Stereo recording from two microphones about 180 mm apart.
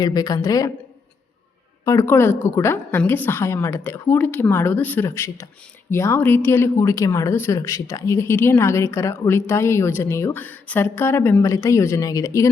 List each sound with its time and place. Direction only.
0.0 s a woman's voice: 20° left (ahead or behind)
1.8 s speech: 15° left (ahead or behind)